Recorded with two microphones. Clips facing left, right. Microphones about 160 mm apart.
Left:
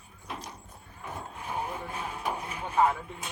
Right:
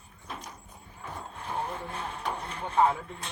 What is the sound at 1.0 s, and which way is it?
Speech, 10° left (ahead or behind).